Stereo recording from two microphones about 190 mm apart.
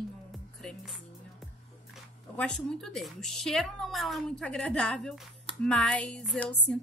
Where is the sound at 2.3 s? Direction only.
5° left (ahead or behind).